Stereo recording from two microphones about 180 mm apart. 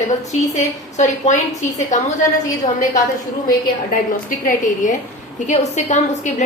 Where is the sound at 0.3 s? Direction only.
40° left (ahead or behind).